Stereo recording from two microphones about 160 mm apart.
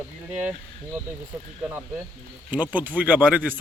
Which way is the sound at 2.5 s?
10° right (ahead or behind).